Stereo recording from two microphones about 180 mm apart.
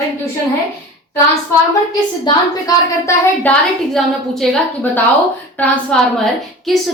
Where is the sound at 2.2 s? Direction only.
20° left (ahead or behind).